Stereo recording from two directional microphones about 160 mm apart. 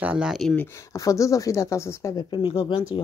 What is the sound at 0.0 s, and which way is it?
Speech, 5° right (ahead or behind).